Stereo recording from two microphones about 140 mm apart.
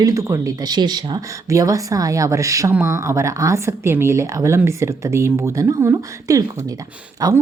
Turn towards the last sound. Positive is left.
turn(degrees=-25)  # may be behind; listen again after turning